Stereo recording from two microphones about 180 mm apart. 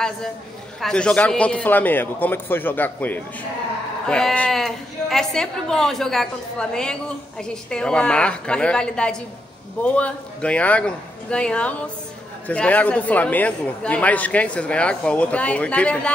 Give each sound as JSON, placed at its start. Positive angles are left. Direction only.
{"t": 0.7, "sound": "a man's voice", "side_deg": 5}